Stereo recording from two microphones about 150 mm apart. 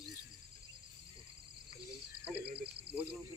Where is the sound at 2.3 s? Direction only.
90° right.